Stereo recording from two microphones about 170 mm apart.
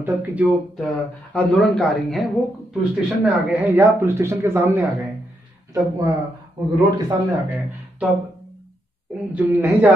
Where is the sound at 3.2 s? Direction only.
10° right (ahead or behind).